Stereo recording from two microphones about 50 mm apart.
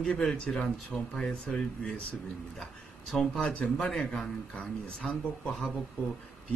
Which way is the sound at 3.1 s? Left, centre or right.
Centre.